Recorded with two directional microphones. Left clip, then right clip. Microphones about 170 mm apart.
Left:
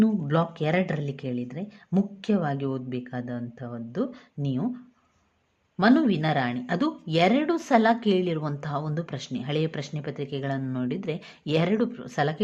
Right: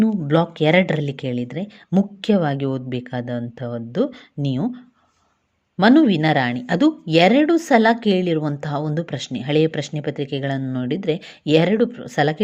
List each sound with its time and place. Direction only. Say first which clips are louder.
0.0 s speech: right 6 dB; 25° right (ahead or behind)